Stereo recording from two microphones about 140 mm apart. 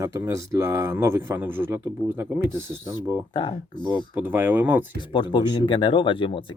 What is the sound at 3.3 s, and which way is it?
Speech, 30° left (ahead or behind).